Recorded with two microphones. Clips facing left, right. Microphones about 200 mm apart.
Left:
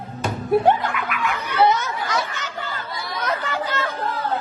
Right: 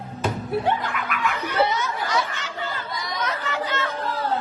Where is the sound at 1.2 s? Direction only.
45° left (ahead or behind).